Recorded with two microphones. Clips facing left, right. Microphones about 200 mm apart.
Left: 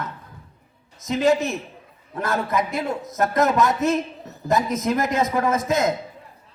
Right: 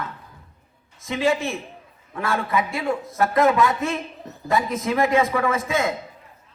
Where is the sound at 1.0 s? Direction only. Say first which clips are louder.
Left 3 dB; 40° left (ahead or behind).